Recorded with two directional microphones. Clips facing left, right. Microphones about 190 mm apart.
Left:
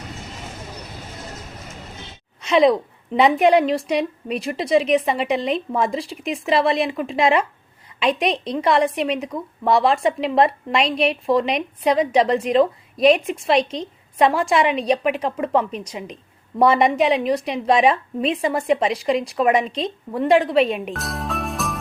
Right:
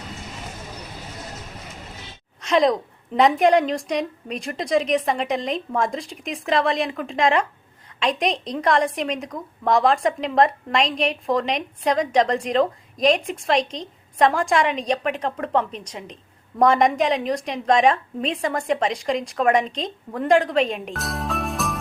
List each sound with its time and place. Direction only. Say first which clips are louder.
2.4 s a woman's voice: left 3 dB; centre (ahead or behind)